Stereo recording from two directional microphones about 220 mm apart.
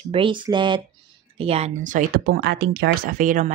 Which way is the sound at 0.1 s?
20° right (ahead or behind).